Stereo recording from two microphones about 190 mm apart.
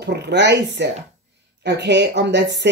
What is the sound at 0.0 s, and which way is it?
Speech, 65° right (ahead or behind).